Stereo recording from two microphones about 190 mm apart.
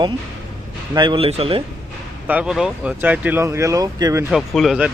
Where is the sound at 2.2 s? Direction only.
5° right (ahead or behind).